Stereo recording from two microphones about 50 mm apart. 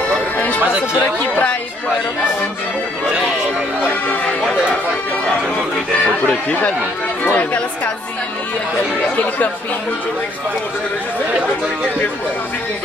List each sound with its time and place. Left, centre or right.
0.7 s speech: right
1.3 s speech: left
4.1 s music: left
6.2 s speech: left